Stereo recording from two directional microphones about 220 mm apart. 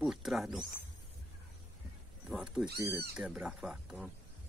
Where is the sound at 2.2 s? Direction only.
5° right (ahead or behind).